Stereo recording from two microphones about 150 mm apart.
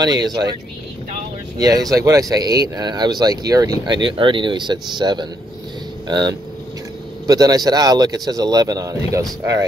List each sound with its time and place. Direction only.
0.0 s speech: 25° right (ahead or behind)
1.6 s speech: 25° right (ahead or behind)